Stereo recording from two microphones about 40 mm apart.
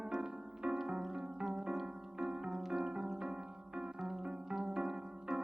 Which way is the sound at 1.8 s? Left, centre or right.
Centre.